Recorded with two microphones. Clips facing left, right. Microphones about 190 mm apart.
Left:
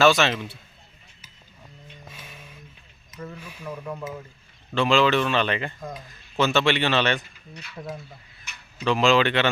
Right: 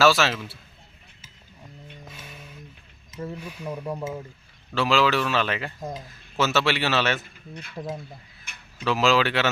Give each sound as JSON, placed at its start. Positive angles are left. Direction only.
{"t": 0.0, "sound": "speech", "side_deg": 0}
{"t": 3.1, "sound": "speech", "side_deg": -25}
{"t": 3.3, "sound": "speech", "side_deg": -10}
{"t": 4.7, "sound": "speech", "side_deg": -5}
{"t": 7.5, "sound": "speech", "side_deg": -50}
{"t": 8.5, "sound": "a sound", "side_deg": -55}
{"t": 8.8, "sound": "speech", "side_deg": -5}